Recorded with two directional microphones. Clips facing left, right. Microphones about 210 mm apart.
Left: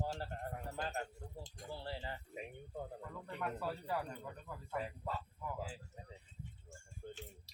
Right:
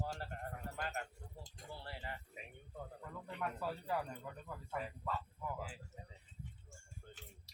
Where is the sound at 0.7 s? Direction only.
30° left (ahead or behind).